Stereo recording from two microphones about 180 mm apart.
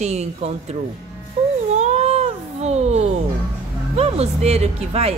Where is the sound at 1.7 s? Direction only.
40° right (ahead or behind).